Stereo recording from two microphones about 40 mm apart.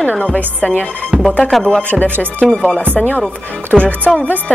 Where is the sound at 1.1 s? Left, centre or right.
Right.